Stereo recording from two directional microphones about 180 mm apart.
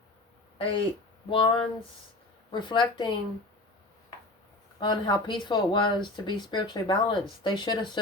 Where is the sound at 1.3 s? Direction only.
30° left (ahead or behind).